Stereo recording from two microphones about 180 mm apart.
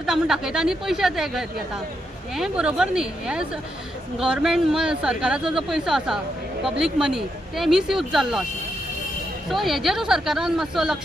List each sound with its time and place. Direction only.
0.0 s speech: 5° right (ahead or behind)
9.5 s speech: centre (ahead or behind)